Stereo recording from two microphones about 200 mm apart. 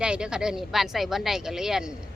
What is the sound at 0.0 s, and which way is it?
Speech, 5° right (ahead or behind).